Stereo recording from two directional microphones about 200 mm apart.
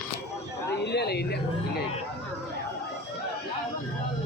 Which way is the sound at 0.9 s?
55° left (ahead or behind).